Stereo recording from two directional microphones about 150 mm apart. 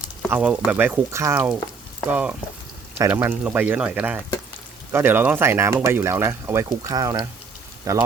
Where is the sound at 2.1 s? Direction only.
10° right (ahead or behind).